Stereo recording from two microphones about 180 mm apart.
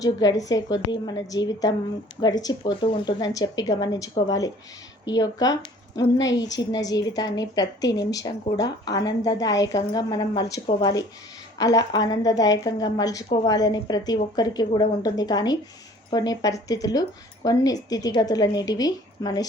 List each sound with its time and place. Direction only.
0.0 s a woman's voice: 20° left (ahead or behind)